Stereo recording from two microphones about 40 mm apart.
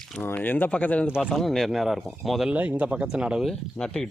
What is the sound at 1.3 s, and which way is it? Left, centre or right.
Speech, centre.